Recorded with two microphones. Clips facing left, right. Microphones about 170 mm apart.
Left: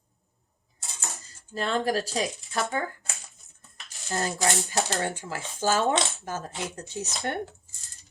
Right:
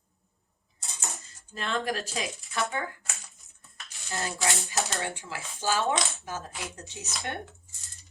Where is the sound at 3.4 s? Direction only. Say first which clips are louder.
Right 1 dB; 20° left (ahead or behind).